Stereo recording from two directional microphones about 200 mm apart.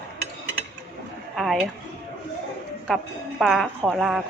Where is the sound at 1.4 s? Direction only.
Centre (ahead or behind).